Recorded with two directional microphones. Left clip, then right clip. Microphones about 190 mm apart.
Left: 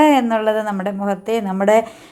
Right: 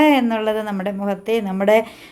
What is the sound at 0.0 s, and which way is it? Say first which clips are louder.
A woman's voice: left 2 dB; centre (ahead or behind).